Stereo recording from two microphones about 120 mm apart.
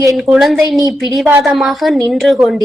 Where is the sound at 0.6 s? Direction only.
30° right (ahead or behind).